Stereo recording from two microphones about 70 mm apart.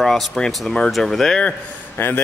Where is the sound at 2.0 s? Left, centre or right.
Left.